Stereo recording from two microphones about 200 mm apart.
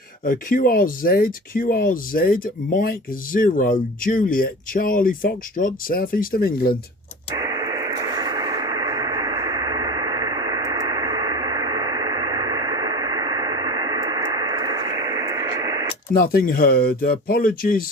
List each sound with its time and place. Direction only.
0.3 s speech: 45° left (ahead or behind)
7.3 s radio: 20° right (ahead or behind)
16.2 s speech: 45° left (ahead or behind)